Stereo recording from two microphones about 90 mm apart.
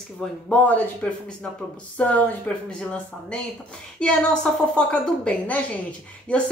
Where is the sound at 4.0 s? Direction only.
10° left (ahead or behind).